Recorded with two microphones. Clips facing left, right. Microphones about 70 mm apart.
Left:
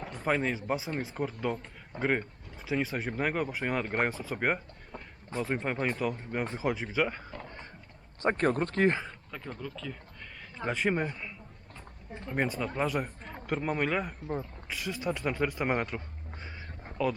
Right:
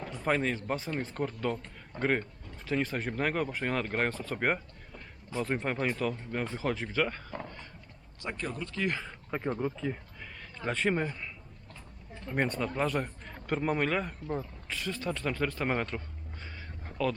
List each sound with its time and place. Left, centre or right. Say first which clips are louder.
0.2 s speech: even; centre
7.4 s a sound: even; left
8.2 s speech: left 10 dB; left
9.3 s speech: right 10 dB; right
10.6 s speech: even; centre
12.3 s speech: even; centre